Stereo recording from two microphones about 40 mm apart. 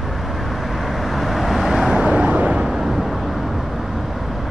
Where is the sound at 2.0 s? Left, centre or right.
Right.